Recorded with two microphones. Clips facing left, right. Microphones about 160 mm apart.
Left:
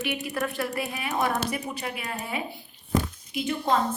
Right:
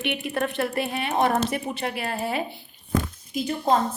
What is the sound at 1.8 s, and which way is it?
Speech, 75° right (ahead or behind).